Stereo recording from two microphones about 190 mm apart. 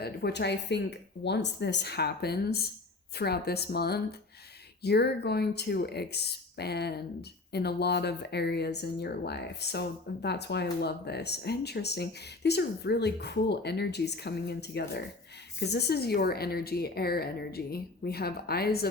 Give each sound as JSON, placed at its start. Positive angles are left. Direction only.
{"t": 0.0, "sound": "speech", "side_deg": 60}